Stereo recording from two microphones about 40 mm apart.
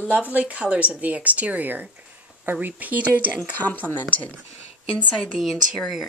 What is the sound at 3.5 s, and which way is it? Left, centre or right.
Speech, left.